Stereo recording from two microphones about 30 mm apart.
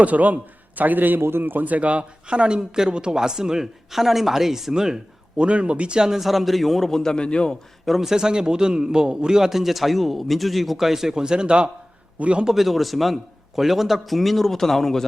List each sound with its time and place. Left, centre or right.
0.0 s a man's voice: right
0.8 s a man's voice: right
2.3 s a man's voice: right
5.4 s a man's voice: right
5.9 s a man's voice: right
6.1 s a man's voice: centre
6.8 s a man's voice: centre
7.2 s a man's voice: left
7.9 s a man's voice: centre
8.1 s a man's voice: right
9.4 s a man's voice: centre
11.2 s a man's voice: right
12.2 s a man's voice: right
12.5 s a man's voice: centre